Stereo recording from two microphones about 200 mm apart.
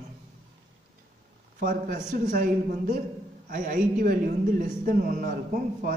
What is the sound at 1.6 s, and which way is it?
A man's voice, 45° right (ahead or behind).